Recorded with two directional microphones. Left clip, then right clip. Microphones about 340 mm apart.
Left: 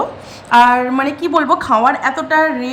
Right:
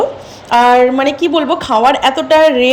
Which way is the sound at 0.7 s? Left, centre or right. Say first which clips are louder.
Right 5 dB; centre.